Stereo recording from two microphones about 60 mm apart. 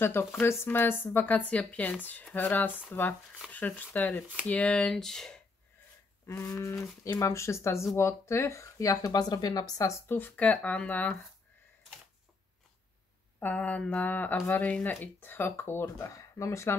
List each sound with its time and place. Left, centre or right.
0.0 s speech: left
4.8 s speech: centre
6.2 s toothbrush: left
7.2 s speech: left
10.0 s speech: left
13.4 s speech: left
16.0 s speech: left